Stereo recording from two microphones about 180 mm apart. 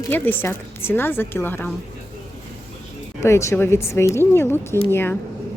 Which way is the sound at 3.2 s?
15° left (ahead or behind).